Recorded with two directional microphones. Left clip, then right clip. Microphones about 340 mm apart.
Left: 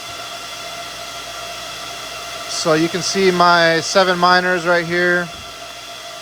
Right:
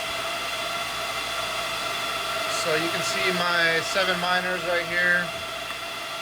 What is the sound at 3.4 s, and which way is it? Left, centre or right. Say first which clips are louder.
Speech: left 9 dB; centre.